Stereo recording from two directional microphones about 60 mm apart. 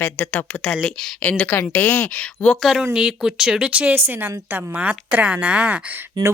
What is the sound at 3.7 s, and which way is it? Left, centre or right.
Speech, right.